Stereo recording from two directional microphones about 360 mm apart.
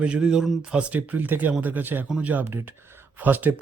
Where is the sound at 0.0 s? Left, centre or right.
Centre.